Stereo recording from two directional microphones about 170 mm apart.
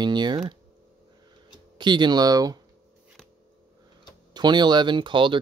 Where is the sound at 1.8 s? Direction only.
25° right (ahead or behind).